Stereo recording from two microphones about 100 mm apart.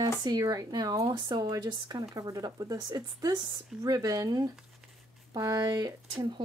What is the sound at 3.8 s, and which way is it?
Speech, 40° right (ahead or behind).